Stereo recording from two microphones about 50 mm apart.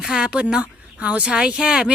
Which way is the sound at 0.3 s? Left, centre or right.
Right.